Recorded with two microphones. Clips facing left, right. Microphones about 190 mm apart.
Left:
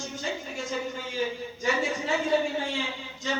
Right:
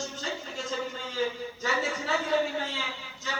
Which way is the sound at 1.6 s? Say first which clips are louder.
Left 3 dB; 20° left (ahead or behind).